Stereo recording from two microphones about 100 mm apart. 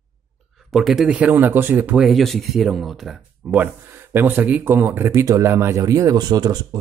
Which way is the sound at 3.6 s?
20° right (ahead or behind).